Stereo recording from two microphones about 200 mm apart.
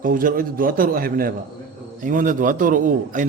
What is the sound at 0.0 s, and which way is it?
A man's voice, 45° right (ahead or behind).